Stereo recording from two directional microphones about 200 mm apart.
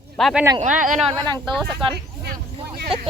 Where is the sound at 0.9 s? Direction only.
35° right (ahead or behind).